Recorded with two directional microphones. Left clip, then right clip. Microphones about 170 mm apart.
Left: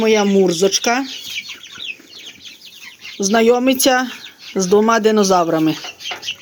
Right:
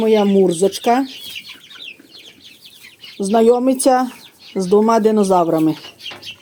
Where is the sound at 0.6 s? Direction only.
20° right (ahead or behind).